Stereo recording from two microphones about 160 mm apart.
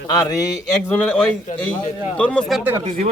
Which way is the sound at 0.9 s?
10° left (ahead or behind).